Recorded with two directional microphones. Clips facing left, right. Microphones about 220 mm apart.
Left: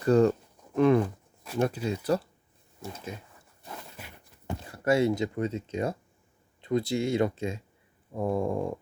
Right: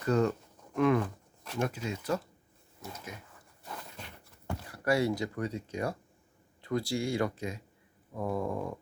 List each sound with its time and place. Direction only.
0.0 s speech: 35° left (ahead or behind)
4.0 s walk: 5° left (ahead or behind)
4.4 s speech: 25° left (ahead or behind)